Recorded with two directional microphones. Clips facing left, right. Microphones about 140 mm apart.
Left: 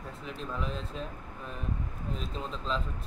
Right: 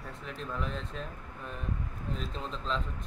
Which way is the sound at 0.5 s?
Centre (ahead or behind).